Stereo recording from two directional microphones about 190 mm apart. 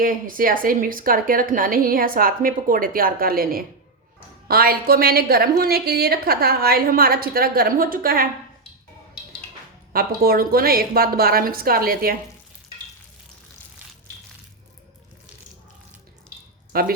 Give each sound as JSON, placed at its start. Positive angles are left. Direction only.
{"t": 0.0, "sound": "a woman's voice", "side_deg": -50}
{"t": 9.9, "sound": "a woman's voice", "side_deg": -50}
{"t": 16.7, "sound": "speech", "side_deg": -50}